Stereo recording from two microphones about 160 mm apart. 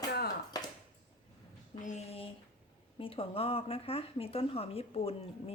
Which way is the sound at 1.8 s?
45° left (ahead or behind).